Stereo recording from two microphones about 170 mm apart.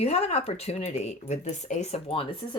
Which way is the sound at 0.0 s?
35° left (ahead or behind).